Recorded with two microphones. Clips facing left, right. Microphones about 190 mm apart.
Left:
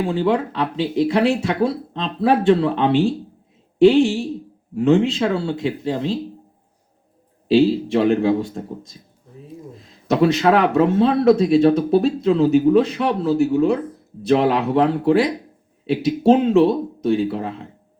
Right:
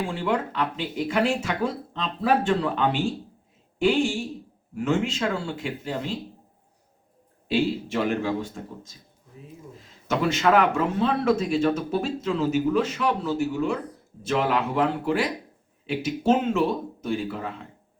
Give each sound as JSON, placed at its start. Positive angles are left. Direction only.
{"t": 0.1, "sound": "speech", "side_deg": 35}
{"t": 4.7, "sound": "speech", "side_deg": 35}
{"t": 7.5, "sound": "speech", "side_deg": 30}
{"t": 10.1, "sound": "speech", "side_deg": 35}